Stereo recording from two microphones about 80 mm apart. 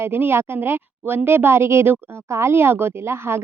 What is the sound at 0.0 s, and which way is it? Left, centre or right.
A woman's voice, right.